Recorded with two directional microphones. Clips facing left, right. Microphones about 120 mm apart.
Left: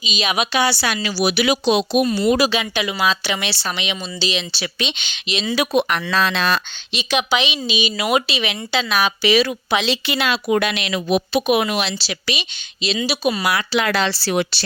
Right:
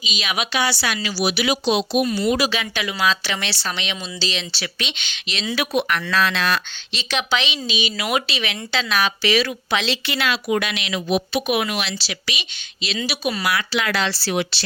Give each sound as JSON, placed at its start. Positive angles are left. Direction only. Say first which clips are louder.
{"t": 0.0, "sound": "speech", "louder": "left 4 dB", "side_deg": 25}
{"t": 1.0, "sound": "speech", "louder": "left 3 dB", "side_deg": 50}
{"t": 2.0, "sound": "speech", "louder": "left 3 dB", "side_deg": 25}
{"t": 10.6, "sound": "speech", "louder": "left 4 dB", "side_deg": 45}
{"t": 11.3, "sound": "speech", "louder": "left 4 dB", "side_deg": 25}
{"t": 13.7, "sound": "speech", "louder": "left 5 dB", "side_deg": 50}